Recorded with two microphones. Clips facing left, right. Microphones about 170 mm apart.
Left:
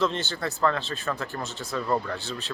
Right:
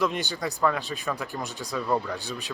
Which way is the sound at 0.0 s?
15° right (ahead or behind).